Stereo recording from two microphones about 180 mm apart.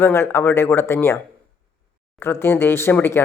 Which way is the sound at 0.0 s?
15° left (ahead or behind).